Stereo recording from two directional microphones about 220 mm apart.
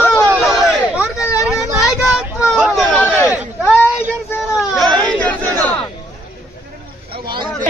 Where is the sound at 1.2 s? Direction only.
15° left (ahead or behind).